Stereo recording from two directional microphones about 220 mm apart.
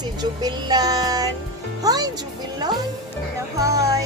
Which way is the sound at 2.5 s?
20° right (ahead or behind).